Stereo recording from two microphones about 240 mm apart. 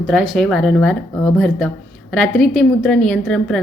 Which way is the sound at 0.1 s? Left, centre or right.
Centre.